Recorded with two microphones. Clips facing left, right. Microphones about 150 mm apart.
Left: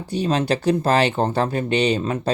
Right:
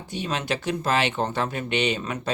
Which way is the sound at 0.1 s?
35° left (ahead or behind).